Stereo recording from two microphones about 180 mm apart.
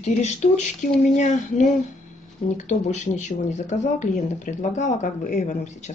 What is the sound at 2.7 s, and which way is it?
Speech, 40° left (ahead or behind).